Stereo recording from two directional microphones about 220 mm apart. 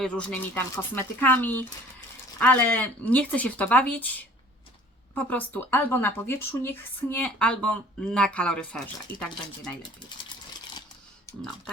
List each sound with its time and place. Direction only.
0.0 s speech: 5° left (ahead or behind)
9.1 s speech: 45° left (ahead or behind)